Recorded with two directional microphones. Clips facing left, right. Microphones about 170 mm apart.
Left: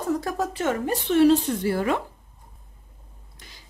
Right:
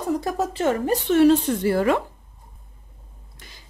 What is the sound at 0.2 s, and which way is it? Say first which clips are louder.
Speech: right 3 dB; 25° right (ahead or behind).